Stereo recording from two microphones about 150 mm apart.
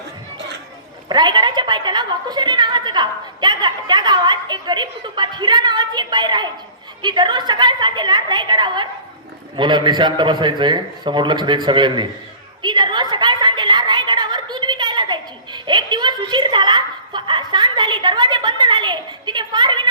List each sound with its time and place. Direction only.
1.0 s a woman's voice: 30° right (ahead or behind)